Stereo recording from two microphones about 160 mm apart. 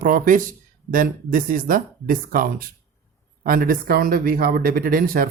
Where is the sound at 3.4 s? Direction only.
65° right (ahead or behind).